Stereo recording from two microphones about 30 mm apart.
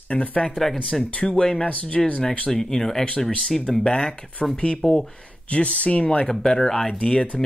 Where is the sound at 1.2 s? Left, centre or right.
Left.